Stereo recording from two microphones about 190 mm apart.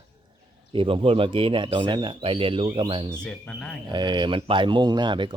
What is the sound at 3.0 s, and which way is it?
Speech, 5° left (ahead or behind).